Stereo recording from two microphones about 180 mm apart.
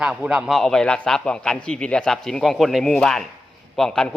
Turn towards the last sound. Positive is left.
turn(degrees=5)  # may be behind; listen again after turning